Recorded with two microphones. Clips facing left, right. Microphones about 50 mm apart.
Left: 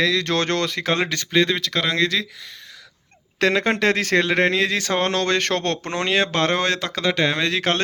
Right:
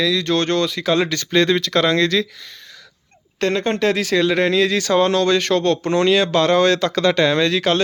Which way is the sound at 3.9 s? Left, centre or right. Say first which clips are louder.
Right 2 dB; left.